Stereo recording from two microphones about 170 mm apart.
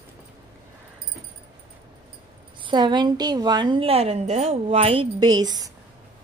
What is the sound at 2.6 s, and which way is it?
A woman's voice, 25° right (ahead or behind).